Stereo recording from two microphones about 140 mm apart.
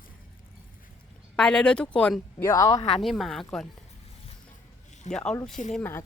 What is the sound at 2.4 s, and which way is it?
Speech, 25° left (ahead or behind).